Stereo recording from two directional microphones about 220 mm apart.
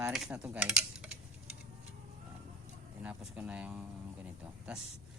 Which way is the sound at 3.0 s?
5° right (ahead or behind).